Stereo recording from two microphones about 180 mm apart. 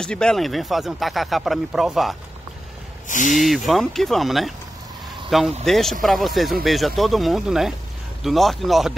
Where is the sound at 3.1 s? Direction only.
45° left (ahead or behind).